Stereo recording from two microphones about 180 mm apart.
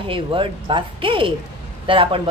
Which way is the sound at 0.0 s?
30° right (ahead or behind).